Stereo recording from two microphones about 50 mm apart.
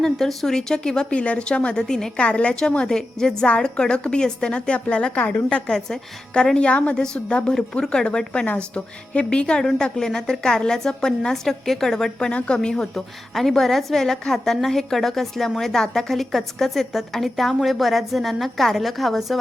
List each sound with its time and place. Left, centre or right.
0.0 s speech: centre
12.3 s a woman's voice: centre